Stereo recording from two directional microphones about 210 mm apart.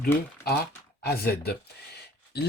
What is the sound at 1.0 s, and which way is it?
Speech, 45° left (ahead or behind).